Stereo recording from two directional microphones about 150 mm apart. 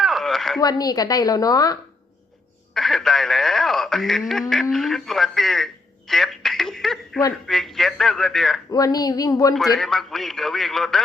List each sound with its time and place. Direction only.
0.0 s a sound: centre (ahead or behind)
0.6 s a woman's voice: 25° left (ahead or behind)
2.7 s a sound: centre (ahead or behind)
4.3 s a man's voice: 5° left (ahead or behind)
6.1 s telephone: centre (ahead or behind)
7.4 s a man's voice: centre (ahead or behind)
8.7 s a woman's voice: 25° left (ahead or behind)
9.7 s a man's voice: centre (ahead or behind)